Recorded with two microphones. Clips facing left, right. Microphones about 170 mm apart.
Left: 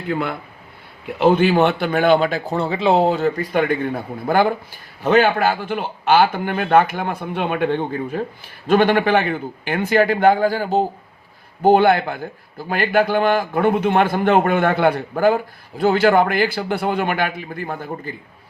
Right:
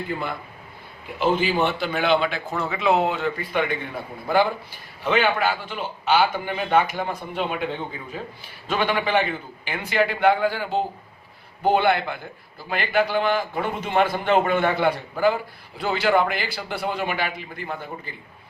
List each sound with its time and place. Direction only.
0.1 s a man's voice: 65° left (ahead or behind); by 18.1 s 50° left (ahead or behind)